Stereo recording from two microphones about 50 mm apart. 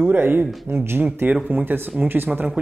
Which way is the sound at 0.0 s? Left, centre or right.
Right.